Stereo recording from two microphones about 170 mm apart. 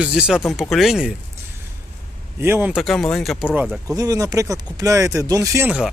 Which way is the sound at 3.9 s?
20° right (ahead or behind).